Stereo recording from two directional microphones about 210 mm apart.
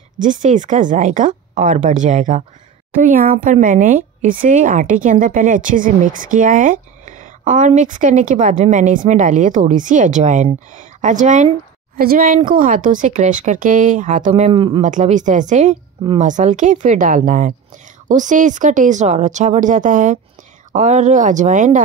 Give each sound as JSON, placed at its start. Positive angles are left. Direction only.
{"t": 0.2, "sound": "a woman's voice", "side_deg": -35}
{"t": 14.8, "sound": "a woman's voice", "side_deg": -35}